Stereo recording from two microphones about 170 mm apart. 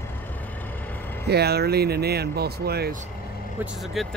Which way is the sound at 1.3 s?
70° right (ahead or behind).